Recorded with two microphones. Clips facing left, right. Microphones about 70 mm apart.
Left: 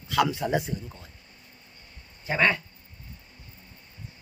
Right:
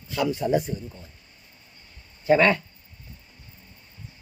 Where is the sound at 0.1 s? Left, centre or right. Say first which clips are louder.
Right 1 dB; left.